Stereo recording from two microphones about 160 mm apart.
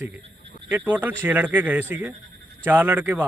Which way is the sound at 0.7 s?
10° right (ahead or behind).